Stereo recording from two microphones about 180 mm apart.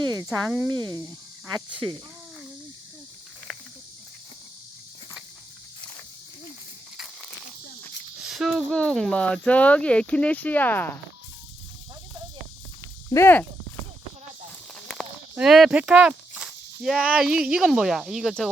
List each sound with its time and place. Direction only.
0.3 s speech: 5° right (ahead or behind)
0.8 s speech: 20° right (ahead or behind)
8.2 s speech: centre (ahead or behind)
13.1 s speech: 15° left (ahead or behind)
14.8 s speech: centre (ahead or behind)